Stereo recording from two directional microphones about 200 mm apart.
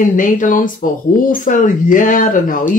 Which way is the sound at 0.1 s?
40° left (ahead or behind).